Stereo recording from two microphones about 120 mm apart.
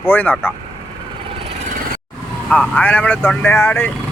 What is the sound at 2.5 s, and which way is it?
Speech, 10° left (ahead or behind).